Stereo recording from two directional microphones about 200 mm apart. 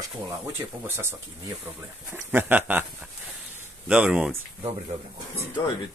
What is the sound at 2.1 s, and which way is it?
Speech, 10° right (ahead or behind).